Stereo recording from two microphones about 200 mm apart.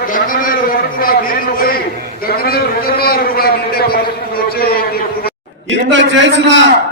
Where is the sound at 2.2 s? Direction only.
50° left (ahead or behind).